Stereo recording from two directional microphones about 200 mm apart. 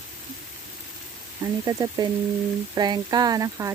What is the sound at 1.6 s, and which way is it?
Speech, 15° right (ahead or behind).